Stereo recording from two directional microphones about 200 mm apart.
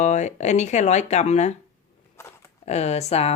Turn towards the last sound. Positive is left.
turn(degrees=30)  # may be behind; listen again after turning